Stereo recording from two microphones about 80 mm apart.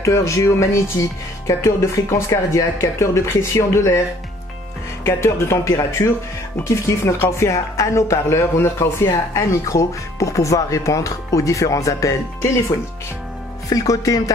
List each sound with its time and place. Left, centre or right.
0.0 s speech: left
5.0 s speech: left